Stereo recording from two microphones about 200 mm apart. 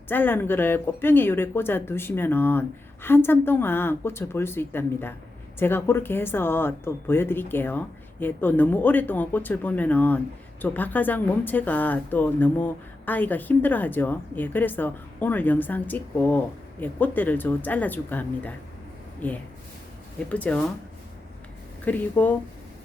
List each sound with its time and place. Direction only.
0.1 s speech: 10° left (ahead or behind)
21.8 s speech: 10° left (ahead or behind)